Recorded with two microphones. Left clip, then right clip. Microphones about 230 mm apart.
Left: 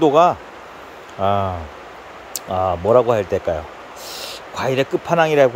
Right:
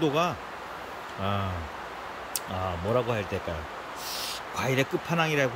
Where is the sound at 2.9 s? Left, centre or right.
Centre.